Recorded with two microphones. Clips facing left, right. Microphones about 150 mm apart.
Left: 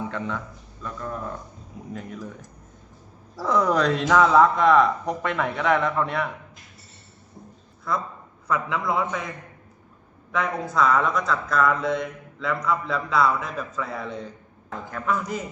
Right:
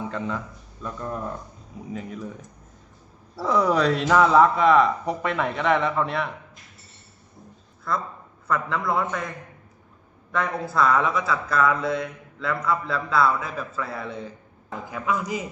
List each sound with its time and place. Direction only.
0.1 s a man's voice: 5° right (ahead or behind)
3.3 s speech: 5° right (ahead or behind)
7.9 s speech: centre (ahead or behind)
10.3 s speech: centre (ahead or behind)